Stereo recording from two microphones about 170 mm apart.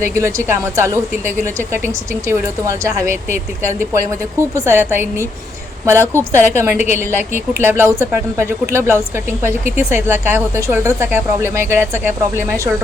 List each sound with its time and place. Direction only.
0.0 s a woman's voice: 15° right (ahead or behind)